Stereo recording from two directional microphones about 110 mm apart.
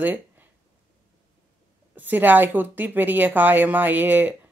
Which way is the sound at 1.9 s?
15° right (ahead or behind).